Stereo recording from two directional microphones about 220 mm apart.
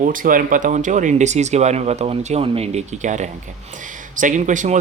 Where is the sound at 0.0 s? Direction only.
40° right (ahead or behind).